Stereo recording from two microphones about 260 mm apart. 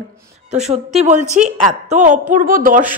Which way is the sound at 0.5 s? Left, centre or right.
Right.